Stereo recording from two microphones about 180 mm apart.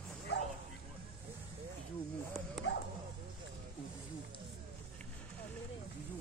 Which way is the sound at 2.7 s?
85° left.